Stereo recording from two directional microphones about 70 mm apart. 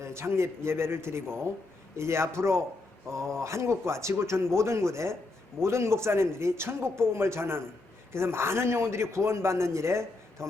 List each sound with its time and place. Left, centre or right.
0.0 s a man's voice: right